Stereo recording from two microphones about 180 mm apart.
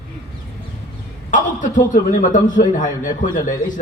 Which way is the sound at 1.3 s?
45° left (ahead or behind).